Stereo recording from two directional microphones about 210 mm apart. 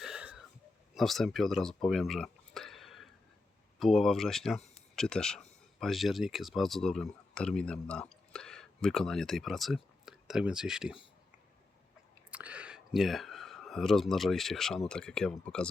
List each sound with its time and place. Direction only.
0.0 s a sound: 5° right (ahead or behind)
0.9 s speech: centre (ahead or behind)
12.3 s speech: 5° right (ahead or behind)